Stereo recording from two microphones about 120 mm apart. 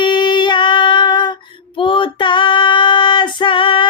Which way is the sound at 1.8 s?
45° left (ahead or behind).